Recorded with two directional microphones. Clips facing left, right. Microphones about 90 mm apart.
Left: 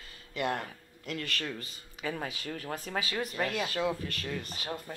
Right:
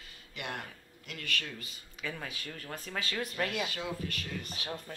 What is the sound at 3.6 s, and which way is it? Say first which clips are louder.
Speech: left 5 dB; 40° left (ahead or behind).